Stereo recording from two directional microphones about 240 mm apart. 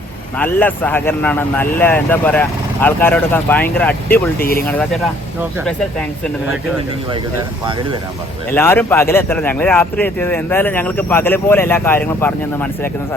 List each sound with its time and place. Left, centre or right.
0.3 s speech: centre
4.4 s speech: left
5.6 s speech: centre
8.4 s speech: centre